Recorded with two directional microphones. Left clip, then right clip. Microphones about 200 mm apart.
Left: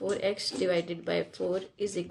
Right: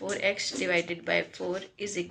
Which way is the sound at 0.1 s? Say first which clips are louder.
Right 4 dB; 60° left (ahead or behind).